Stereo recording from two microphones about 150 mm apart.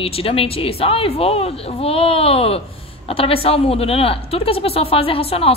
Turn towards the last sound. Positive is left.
turn(degrees=40)  # may be behind; listen again after turning